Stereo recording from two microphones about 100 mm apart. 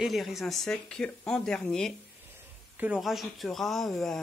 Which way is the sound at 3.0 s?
Centre (ahead or behind).